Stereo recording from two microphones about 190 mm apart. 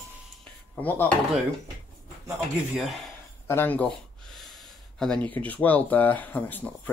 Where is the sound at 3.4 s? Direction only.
10° left (ahead or behind).